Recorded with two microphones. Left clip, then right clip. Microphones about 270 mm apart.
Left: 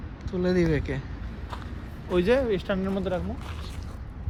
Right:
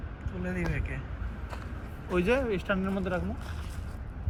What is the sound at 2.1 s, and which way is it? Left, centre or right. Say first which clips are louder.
Speech: left 4 dB; left.